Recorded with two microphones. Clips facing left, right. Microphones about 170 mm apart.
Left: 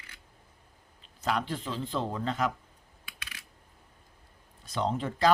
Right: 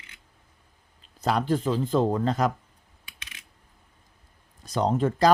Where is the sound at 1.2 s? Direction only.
40° right (ahead or behind).